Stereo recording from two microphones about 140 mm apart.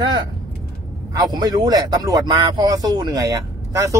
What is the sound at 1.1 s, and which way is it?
Speech, 30° right (ahead or behind).